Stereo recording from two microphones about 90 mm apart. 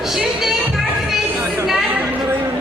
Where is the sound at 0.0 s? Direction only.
5° right (ahead or behind).